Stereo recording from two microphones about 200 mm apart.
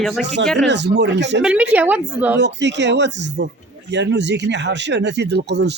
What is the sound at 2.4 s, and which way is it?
Speech, 60° right (ahead or behind).